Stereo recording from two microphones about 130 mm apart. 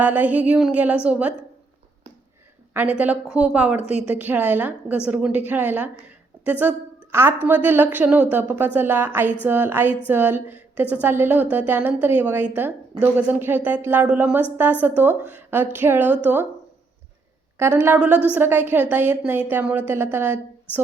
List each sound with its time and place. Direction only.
0.0 s a woman's voice: 15° right (ahead or behind)
3.0 s a woman's voice: 10° right (ahead or behind)
17.6 s a woman's voice: 15° right (ahead or behind)